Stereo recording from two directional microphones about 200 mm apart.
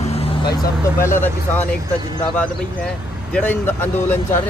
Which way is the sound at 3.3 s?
10° left (ahead or behind).